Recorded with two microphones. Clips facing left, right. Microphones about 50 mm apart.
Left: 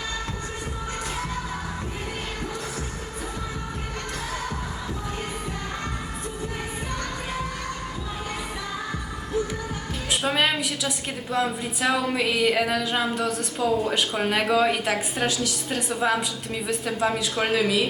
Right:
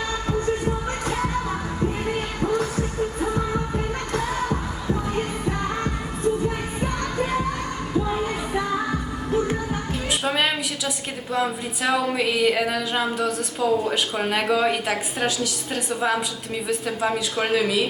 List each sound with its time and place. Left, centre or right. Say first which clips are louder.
2.4 s music: right 10 dB; right
5.1 s music: right 6 dB; right
10.1 s a woman's voice: even; centre